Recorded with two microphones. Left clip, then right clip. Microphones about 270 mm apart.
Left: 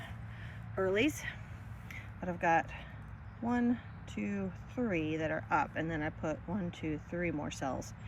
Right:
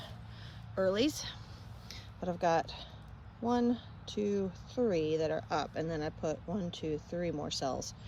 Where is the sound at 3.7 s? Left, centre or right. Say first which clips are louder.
Right 4 dB; centre.